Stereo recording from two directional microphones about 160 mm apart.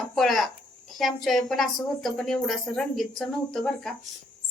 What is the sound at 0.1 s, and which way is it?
A woman's voice, centre (ahead or behind).